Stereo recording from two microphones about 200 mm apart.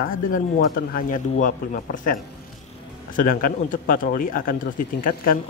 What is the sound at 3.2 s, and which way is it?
Speech, 40° left (ahead or behind).